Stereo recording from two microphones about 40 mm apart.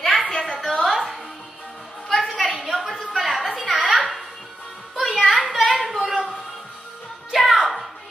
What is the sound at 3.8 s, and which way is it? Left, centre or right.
Music, right.